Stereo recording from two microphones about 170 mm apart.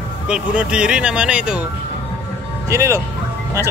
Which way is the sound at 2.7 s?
15° right (ahead or behind).